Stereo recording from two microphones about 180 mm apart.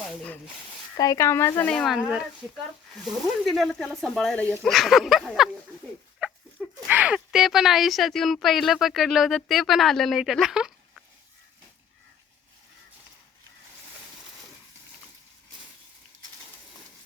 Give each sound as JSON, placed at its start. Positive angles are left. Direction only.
{"t": 0.9, "sound": "speech", "side_deg": 20}